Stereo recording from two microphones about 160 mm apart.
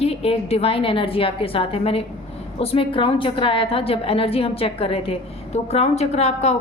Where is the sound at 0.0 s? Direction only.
40° left (ahead or behind).